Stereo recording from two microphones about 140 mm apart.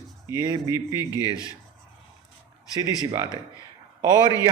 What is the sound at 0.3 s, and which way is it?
Speech, 20° right (ahead or behind).